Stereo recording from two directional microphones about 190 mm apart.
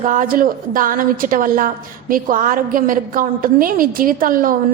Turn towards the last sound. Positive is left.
turn(degrees=-45)  # may be behind; listen again after turning